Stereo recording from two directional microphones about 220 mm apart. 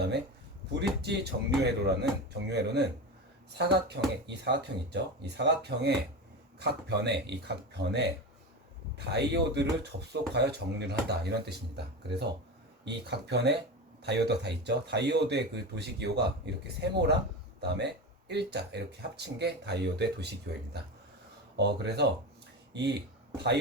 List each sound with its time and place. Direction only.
0.7 s speech: 50° right (ahead or behind)
21.5 s speech: 50° right (ahead or behind)